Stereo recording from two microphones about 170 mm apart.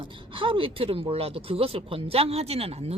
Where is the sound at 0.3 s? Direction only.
30° right (ahead or behind).